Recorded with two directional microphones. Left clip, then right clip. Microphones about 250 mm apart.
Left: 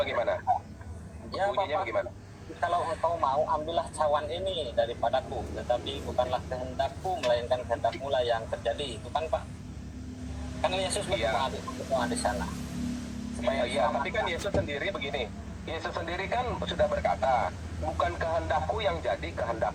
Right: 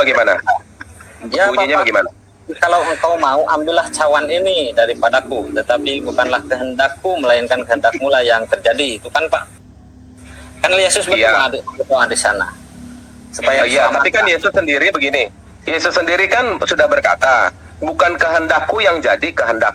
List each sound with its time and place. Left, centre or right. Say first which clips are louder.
0.0 s speech: right 17 dB; right
10.6 s speech: right 17 dB; right
13.4 s speech: right 16 dB; right